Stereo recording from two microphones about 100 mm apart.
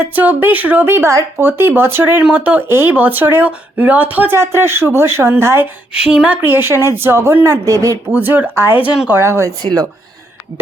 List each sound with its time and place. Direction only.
0.0 s speech: 20° right (ahead or behind)
5.9 s speech: 10° right (ahead or behind)
7.7 s speech: 35° right (ahead or behind)
8.1 s speech: 15° right (ahead or behind)